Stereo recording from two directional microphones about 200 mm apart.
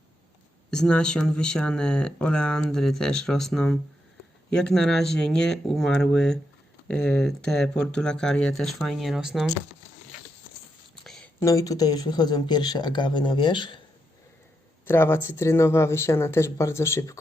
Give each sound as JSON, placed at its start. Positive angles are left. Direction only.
{"t": 0.7, "sound": "speech", "side_deg": 5}
{"t": 11.3, "sound": "speech", "side_deg": 15}
{"t": 14.8, "sound": "speech", "side_deg": 10}